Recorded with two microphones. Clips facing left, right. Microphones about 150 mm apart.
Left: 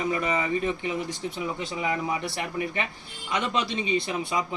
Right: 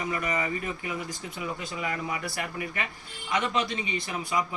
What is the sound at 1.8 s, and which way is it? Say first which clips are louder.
A man's voice: left 5 dB; 25° left (ahead or behind).